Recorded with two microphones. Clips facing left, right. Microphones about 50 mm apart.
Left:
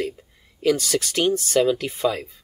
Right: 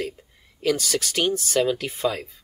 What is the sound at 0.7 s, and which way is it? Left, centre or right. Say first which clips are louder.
Speech: left 3 dB; left.